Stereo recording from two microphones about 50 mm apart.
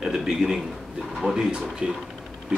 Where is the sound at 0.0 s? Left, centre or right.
Centre.